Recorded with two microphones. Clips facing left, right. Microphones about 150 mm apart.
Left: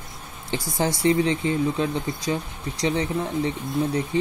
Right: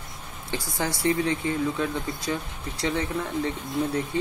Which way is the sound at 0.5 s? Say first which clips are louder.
Left 4 dB; 20° left (ahead or behind).